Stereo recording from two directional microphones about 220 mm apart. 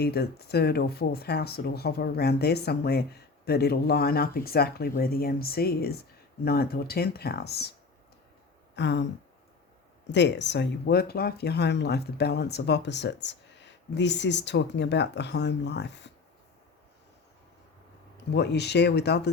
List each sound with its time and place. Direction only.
0.0 s speech: 45° left (ahead or behind)
8.7 s a sound: 55° left (ahead or behind)
10.1 s speech: 50° left (ahead or behind)
18.3 s speech: 50° left (ahead or behind)